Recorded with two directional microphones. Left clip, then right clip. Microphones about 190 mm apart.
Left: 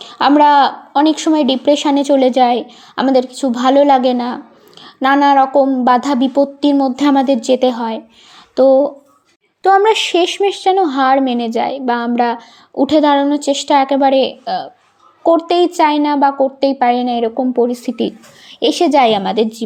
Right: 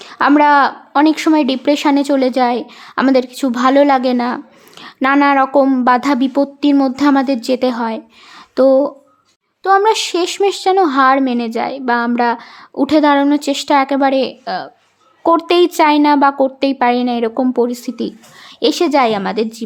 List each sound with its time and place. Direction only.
0.0 s a sound: 5° right (ahead or behind)
0.3 s a woman's voice: 5° right (ahead or behind)
4.8 s a sound: 15° right (ahead or behind)
5.1 s a woman's voice: 10° right (ahead or behind)
9.6 s speech: 10° left (ahead or behind)
9.9 s a woman's voice: centre (ahead or behind)